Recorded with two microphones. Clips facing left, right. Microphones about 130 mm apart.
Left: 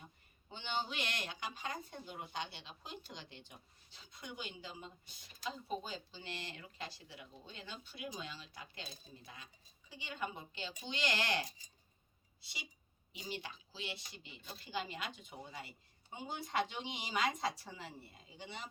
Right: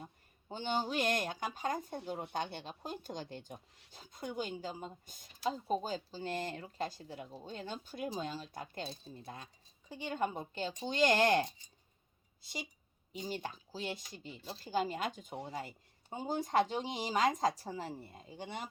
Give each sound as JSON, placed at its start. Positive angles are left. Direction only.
{"t": 0.0, "sound": "speech", "side_deg": -40}